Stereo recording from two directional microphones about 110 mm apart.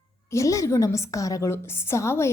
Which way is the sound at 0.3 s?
30° left (ahead or behind).